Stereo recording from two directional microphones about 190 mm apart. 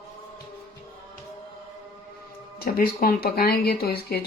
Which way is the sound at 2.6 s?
50° left (ahead or behind).